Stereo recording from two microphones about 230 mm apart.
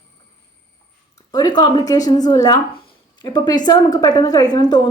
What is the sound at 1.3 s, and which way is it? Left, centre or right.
A woman's voice, centre.